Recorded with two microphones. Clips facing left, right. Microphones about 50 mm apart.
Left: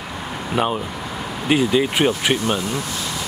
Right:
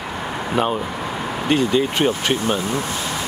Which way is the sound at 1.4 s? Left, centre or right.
Centre.